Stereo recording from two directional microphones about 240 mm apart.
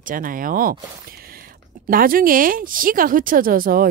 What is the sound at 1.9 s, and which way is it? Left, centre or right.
A woman's voice, right.